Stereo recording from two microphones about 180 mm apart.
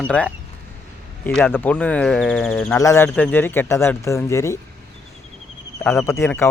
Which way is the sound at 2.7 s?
15° left (ahead or behind).